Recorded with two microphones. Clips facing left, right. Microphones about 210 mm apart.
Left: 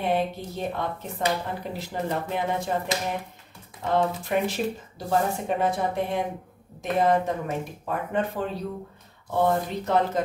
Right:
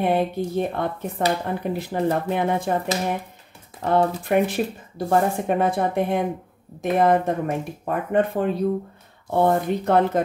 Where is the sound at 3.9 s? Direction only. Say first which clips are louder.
Right 4 dB; 55° right (ahead or behind).